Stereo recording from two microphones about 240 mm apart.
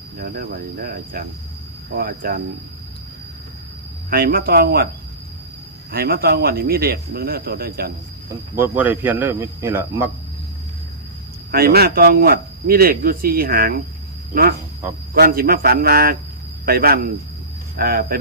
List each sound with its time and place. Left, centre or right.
0.2 s speech: right
4.1 s speech: right
5.9 s speech: right
8.5 s speech: centre
11.5 s speech: right
15.1 s speech: right